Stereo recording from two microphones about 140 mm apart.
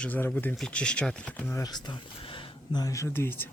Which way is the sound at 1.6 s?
30° left (ahead or behind).